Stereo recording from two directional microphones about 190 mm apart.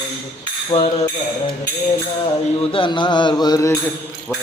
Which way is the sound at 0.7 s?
30° left (ahead or behind).